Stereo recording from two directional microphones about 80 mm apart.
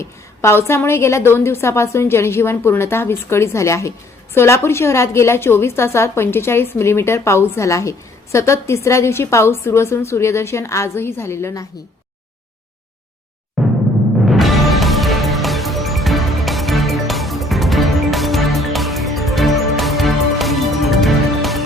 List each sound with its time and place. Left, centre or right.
0.0 s a woman's voice: left
13.6 s timpani: centre
14.3 s music: centre